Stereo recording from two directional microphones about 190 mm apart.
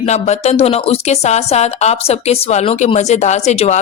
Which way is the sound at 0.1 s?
35° left (ahead or behind).